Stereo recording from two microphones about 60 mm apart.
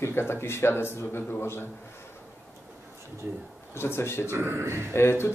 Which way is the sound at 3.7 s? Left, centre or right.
Left.